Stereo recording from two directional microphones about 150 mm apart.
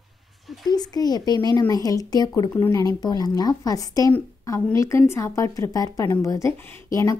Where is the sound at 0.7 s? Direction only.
25° left (ahead or behind).